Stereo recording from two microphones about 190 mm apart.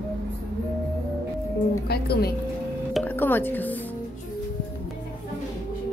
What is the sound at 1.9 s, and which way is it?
Speech, 55° left (ahead or behind).